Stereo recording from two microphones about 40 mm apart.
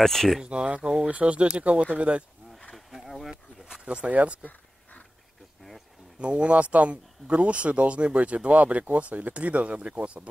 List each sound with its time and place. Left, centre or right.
0.0 s speech: centre
0.4 s speech: right
2.9 s insect: centre
3.6 s a sound: centre
3.9 s speech: right
4.4 s a sound: left
6.1 s speech: right